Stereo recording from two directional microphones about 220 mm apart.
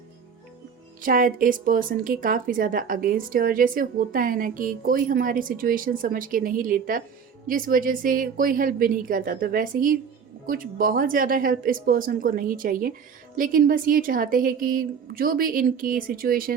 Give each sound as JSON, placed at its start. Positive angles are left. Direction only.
{"t": 1.0, "sound": "speech", "side_deg": -40}